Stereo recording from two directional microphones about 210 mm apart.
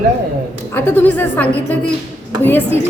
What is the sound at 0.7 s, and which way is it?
A woman's voice, 10° left (ahead or behind).